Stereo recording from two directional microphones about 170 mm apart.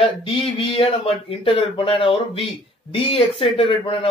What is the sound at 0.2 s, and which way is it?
Speech, 30° left (ahead or behind).